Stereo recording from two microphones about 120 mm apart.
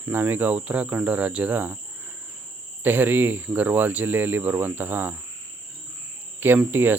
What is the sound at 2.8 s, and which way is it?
Cricket, 15° right (ahead or behind).